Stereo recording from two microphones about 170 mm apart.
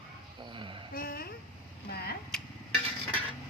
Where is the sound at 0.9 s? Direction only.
60° left (ahead or behind).